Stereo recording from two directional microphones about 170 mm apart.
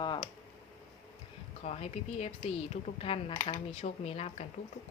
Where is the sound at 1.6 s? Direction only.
40° left (ahead or behind).